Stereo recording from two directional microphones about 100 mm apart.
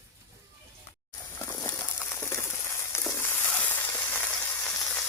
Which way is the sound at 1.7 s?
25° left (ahead or behind).